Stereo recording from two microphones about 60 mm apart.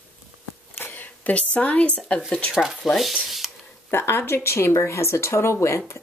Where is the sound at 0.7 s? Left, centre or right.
Left.